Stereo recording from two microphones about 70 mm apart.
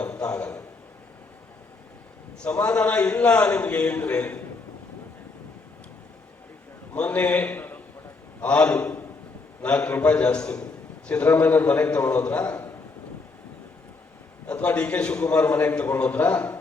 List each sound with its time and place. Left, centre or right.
0.0 s a sound: centre
2.4 s a man's voice: centre
6.9 s a man's voice: centre
14.4 s a man's voice: centre